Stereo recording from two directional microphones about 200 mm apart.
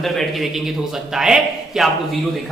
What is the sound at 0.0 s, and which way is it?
A man's voice, centre (ahead or behind).